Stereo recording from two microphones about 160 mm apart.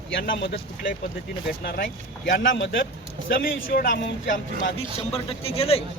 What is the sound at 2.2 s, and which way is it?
A man's voice, 60° left (ahead or behind).